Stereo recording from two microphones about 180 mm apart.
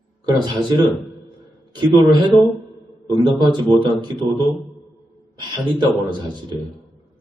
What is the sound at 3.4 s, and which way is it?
Speech, 25° right (ahead or behind).